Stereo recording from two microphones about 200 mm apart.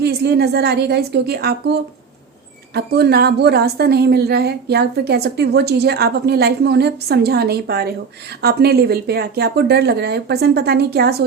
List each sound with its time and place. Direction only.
0.0 s a woman's voice: 55° right (ahead or behind)